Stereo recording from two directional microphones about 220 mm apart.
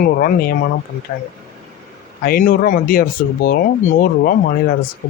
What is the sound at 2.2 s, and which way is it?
Speech, 40° left (ahead or behind).